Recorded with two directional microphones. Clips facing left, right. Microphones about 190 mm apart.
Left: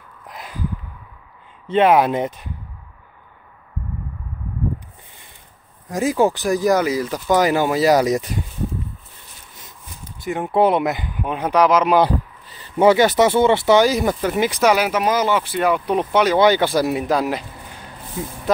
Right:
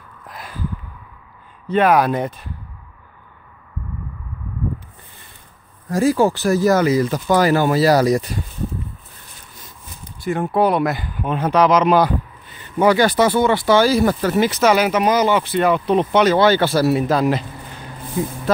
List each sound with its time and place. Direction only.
0.3 s a sound: 20° left (ahead or behind)
1.7 s speech: 25° left (ahead or behind)
5.9 s speech: 20° left (ahead or behind)
10.0 s speech: 15° left (ahead or behind)
12.4 s speech: 35° left (ahead or behind); by 17.5 s 10° left (ahead or behind)